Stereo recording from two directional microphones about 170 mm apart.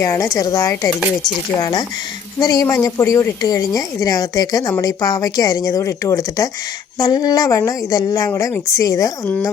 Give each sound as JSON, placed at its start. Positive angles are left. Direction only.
{"t": 0.0, "sound": "a woman's voice", "side_deg": 20}